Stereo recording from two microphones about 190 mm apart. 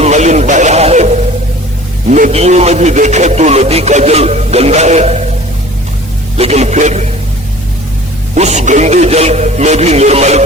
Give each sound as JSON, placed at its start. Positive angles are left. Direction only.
{"t": 0.0, "sound": "radio", "side_deg": -35}
{"t": 2.0, "sound": "a man's voice", "side_deg": -40}
{"t": 6.3, "sound": "a sound", "side_deg": -35}
{"t": 8.4, "sound": "a man's voice", "side_deg": -35}